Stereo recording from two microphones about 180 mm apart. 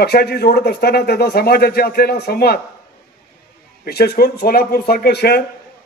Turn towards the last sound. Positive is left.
turn(degrees=65)  # may be behind; listen again after turning